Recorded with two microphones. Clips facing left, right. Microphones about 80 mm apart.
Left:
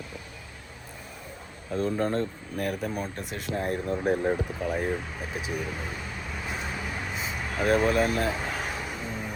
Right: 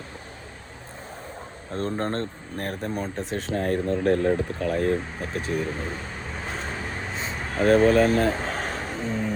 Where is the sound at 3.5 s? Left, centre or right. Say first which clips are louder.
Right 4 dB; right.